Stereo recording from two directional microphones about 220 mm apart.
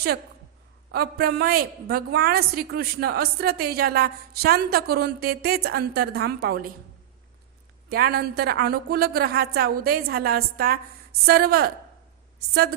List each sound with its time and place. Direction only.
0.9 s a woman's voice: 45° right (ahead or behind)
7.9 s a woman's voice: 45° right (ahead or behind)